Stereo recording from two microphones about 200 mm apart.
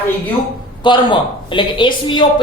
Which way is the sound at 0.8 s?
25° left (ahead or behind).